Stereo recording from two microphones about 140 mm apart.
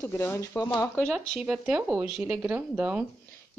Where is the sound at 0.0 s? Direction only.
20° left (ahead or behind).